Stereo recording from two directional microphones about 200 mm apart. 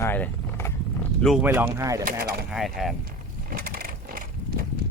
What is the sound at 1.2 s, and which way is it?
Speech, 5° right (ahead or behind).